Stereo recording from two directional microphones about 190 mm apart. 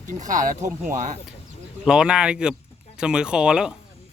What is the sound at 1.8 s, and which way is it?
Speech, 5° right (ahead or behind).